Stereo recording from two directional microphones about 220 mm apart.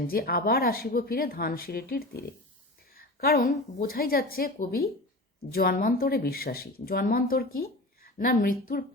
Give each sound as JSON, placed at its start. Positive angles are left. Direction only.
{"t": 0.1, "sound": "speech", "side_deg": 45}
{"t": 2.9, "sound": "a sound", "side_deg": 45}
{"t": 3.5, "sound": "a woman's voice", "side_deg": 40}